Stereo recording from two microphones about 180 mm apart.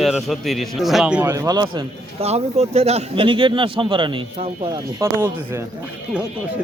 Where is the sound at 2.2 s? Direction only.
35° right (ahead or behind); by 5.6 s 15° right (ahead or behind).